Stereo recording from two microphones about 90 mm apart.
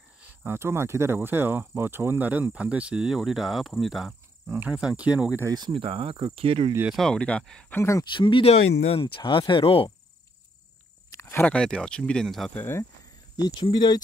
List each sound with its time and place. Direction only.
0.4 s speech: 25° right (ahead or behind); by 4.1 s centre (ahead or behind)
4.5 s speech: 20° right (ahead or behind)
5.7 s cricket: 90° right
7.0 s speech: 10° left (ahead or behind)
7.7 s speech: 30° left (ahead or behind)
8.0 s speech: 60° left (ahead or behind); by 9.8 s 80° left
11.1 s a sound: 25° left (ahead or behind)
11.4 s speech: 10° left (ahead or behind)
12.5 s speech: 25° left (ahead or behind)
13.6 s speech: 55° left (ahead or behind)